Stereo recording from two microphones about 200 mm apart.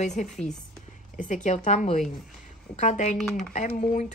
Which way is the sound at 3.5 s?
35° left (ahead or behind).